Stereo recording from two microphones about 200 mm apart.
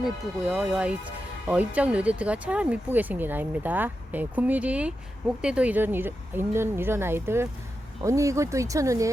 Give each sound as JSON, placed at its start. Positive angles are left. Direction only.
{"t": 0.0, "sound": "speech", "side_deg": -5}